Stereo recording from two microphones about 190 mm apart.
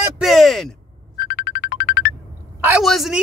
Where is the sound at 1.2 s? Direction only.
50° left (ahead or behind).